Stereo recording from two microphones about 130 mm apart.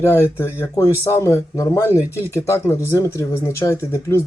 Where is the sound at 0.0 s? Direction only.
20° left (ahead or behind).